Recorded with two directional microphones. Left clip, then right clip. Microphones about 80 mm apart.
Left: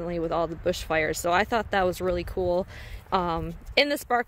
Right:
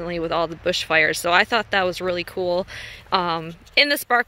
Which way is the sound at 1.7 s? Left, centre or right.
Left.